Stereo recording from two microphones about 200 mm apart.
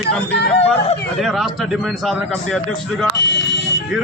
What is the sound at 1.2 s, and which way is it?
A man's voice, centre (ahead or behind).